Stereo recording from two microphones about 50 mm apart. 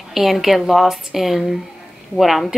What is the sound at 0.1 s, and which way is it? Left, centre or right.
A woman's voice, centre.